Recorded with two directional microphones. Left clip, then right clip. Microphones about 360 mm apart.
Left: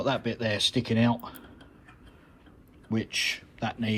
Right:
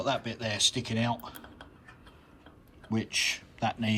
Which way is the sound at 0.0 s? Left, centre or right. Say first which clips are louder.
Left 3 dB; centre.